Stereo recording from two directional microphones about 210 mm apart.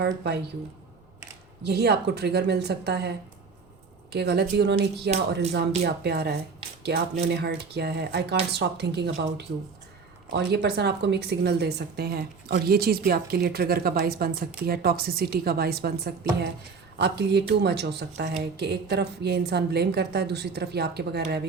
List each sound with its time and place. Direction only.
1.6 s a woman's voice: 50° right (ahead or behind)